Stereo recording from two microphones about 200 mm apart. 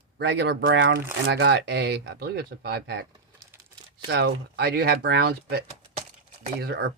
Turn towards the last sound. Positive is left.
turn(degrees=-55)  # may be behind; listen again after turning